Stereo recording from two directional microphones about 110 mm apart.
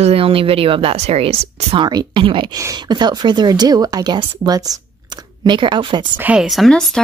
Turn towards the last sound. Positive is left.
turn(degrees=5)  # may be behind; listen again after turning